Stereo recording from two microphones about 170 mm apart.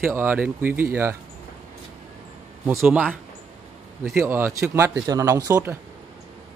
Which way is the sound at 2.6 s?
15° right (ahead or behind).